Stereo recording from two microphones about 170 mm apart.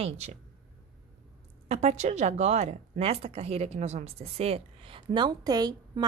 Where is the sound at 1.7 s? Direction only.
40° right (ahead or behind); by 6.0 s 25° right (ahead or behind).